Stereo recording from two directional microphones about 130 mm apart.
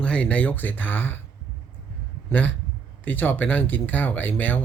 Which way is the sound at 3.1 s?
15° left (ahead or behind).